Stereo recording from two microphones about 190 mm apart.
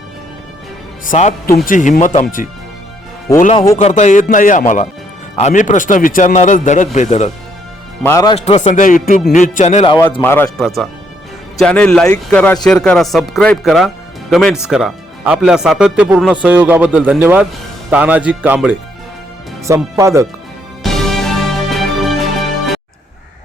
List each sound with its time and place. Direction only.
1.0 s speech: 50° left (ahead or behind)
3.8 s a man's voice: 35° left (ahead or behind)
8.0 s speech: 15° left (ahead or behind)
8.4 s a man's voice: 35° left (ahead or behind)
10.2 s speech: 10° left (ahead or behind); by 20.2 s 15° right (ahead or behind)
20.8 s music: centre (ahead or behind)